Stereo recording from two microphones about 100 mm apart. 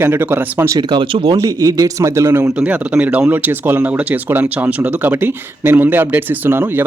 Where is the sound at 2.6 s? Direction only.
10° right (ahead or behind).